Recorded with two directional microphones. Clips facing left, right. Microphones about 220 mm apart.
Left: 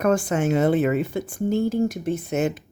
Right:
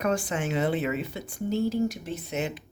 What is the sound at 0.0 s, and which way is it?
Speech, 50° left (ahead or behind).